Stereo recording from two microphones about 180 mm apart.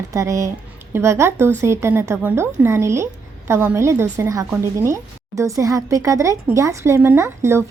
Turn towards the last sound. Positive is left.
turn(degrees=-15)  # may be behind; listen again after turning